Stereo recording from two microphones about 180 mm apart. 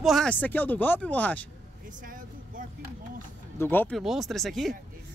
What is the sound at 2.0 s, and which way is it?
Vehicle, 50° right (ahead or behind).